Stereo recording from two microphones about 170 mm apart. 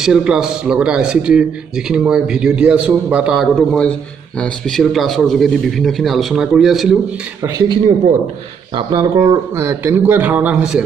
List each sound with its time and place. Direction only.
0.0 s speech: 5° right (ahead or behind)
3.5 s a man's voice: 5° left (ahead or behind)
7.4 s speech: 25° right (ahead or behind); by 10.8 s 5° right (ahead or behind)